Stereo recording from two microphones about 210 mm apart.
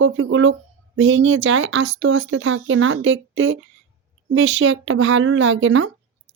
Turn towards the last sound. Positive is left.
turn(degrees=-65)  # may be behind; listen again after turning